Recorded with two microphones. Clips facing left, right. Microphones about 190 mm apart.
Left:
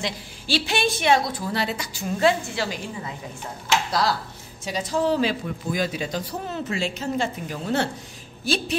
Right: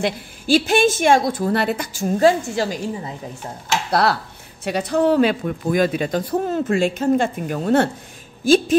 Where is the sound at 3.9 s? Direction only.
65° right (ahead or behind).